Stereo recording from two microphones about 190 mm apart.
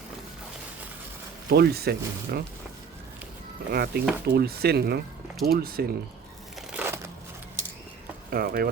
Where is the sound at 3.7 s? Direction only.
55° right (ahead or behind).